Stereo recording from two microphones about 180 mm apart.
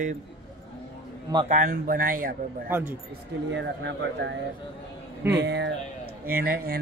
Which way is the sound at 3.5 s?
80° right.